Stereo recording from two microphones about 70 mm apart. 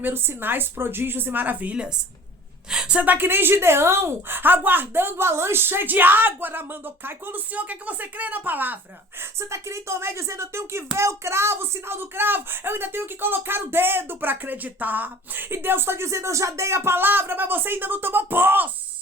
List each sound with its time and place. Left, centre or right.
0.0 s speech: right
9.4 s speech: right